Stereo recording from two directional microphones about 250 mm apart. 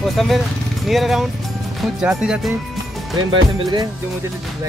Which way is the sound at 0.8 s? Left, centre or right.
Centre.